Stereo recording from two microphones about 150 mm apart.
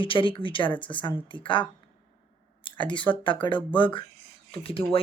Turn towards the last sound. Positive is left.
turn(degrees=40)  # may be behind; listen again after turning